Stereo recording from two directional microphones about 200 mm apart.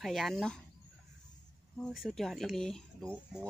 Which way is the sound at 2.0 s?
Centre (ahead or behind).